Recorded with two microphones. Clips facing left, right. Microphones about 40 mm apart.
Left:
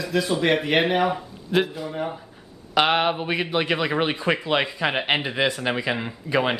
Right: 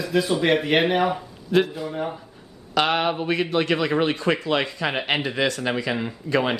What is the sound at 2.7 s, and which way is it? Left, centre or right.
Speech, centre.